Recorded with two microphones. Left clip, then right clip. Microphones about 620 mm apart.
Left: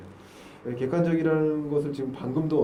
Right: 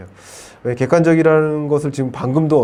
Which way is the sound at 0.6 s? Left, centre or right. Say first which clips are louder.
Right 13 dB; right.